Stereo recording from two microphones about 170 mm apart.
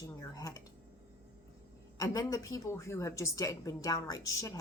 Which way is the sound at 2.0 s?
20° left (ahead or behind).